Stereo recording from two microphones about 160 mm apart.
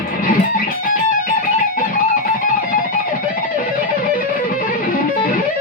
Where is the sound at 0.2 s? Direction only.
65° left (ahead or behind).